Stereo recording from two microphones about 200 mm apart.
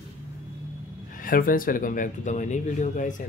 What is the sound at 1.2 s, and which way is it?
Speech, 45° left (ahead or behind).